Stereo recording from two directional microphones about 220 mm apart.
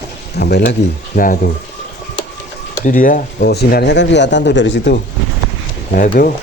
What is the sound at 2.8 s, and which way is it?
Speech, 40° left (ahead or behind).